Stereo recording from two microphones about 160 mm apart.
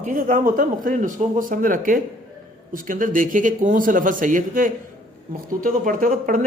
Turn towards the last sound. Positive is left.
turn(degrees=-60)  # may be behind; listen again after turning